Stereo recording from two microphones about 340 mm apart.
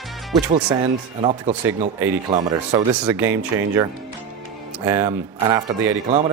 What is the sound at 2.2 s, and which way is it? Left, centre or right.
A man's voice, centre.